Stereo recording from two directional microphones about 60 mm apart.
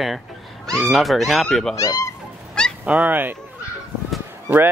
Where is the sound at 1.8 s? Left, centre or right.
Left.